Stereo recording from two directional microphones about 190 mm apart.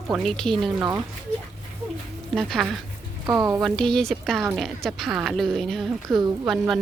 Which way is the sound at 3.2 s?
15° right (ahead or behind).